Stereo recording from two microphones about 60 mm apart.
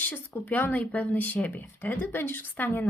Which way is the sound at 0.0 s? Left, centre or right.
Left.